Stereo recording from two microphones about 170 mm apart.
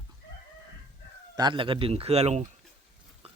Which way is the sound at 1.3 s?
25° right (ahead or behind).